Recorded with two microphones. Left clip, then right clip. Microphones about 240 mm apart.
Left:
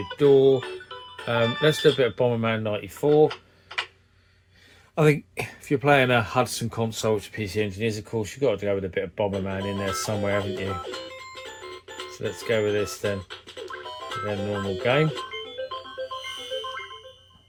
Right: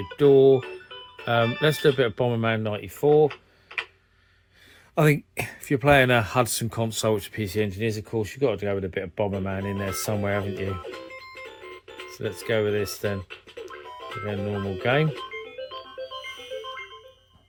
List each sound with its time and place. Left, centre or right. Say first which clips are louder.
0.2 s speech: right 1 dB; right
4.9 s speech: left 1 dB; right
10.5 s speech: left 2 dB; centre
11.6 s music: left 3 dB; centre
12.2 s speech: even; right
14.4 s speech: left 1 dB; right